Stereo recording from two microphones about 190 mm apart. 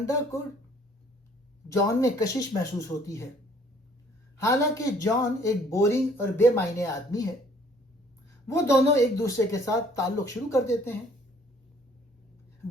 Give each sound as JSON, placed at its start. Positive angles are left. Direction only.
{"t": 0.0, "sound": "speech", "side_deg": 15}
{"t": 2.0, "sound": "speech", "side_deg": 15}
{"t": 4.4, "sound": "speech", "side_deg": 15}
{"t": 8.4, "sound": "speech", "side_deg": 15}